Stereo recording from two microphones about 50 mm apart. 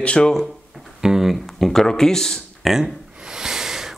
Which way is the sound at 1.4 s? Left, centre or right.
Centre.